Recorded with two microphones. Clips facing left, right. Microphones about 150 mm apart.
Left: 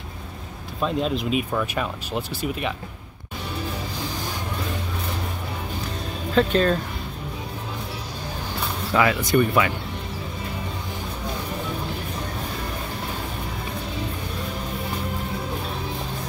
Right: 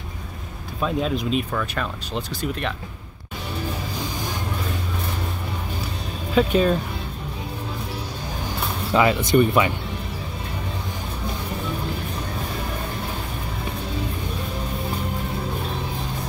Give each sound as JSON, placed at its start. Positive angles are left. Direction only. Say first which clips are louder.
{"t": 0.7, "sound": "speech", "louder": "even", "side_deg": 0}
{"t": 1.5, "sound": "speech", "louder": "left 1 dB", "side_deg": 10}
{"t": 6.3, "sound": "speech", "louder": "right 1 dB", "side_deg": -10}
{"t": 8.9, "sound": "speech", "louder": "right 2 dB", "side_deg": -25}